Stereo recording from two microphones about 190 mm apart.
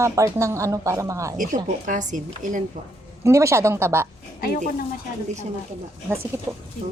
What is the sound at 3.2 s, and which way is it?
Speech, 15° right (ahead or behind).